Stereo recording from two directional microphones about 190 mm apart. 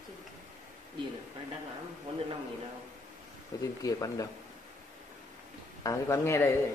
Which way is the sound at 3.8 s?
20° left (ahead or behind).